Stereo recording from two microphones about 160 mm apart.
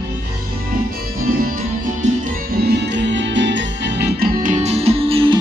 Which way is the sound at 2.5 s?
85° right.